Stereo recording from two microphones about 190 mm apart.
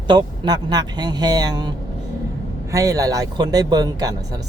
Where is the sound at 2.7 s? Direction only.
15° right (ahead or behind).